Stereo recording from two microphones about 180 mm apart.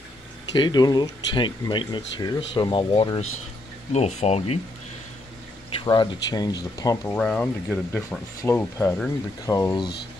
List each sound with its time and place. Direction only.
0.6 s speech: 25° left (ahead or behind)
5.8 s speech: 25° left (ahead or behind)
7.2 s speech: 5° left (ahead or behind)
9.5 s speech: 20° left (ahead or behind)